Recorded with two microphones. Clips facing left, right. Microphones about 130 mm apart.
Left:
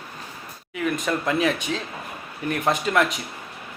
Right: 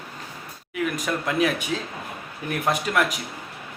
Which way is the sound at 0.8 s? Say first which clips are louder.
Left 4 dB; centre (ahead or behind).